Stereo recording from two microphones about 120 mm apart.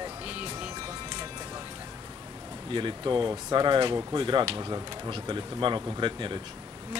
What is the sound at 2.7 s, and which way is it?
Speech, 40° right (ahead or behind).